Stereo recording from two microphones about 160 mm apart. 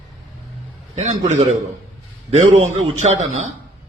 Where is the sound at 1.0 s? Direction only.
50° right (ahead or behind).